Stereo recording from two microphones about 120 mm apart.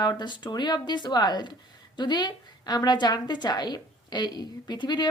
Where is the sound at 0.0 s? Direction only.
35° left (ahead or behind).